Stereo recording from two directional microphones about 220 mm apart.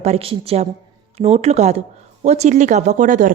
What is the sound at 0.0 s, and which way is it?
A woman's voice, 30° right (ahead or behind).